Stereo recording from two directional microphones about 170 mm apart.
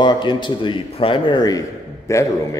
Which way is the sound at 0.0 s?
25° left (ahead or behind).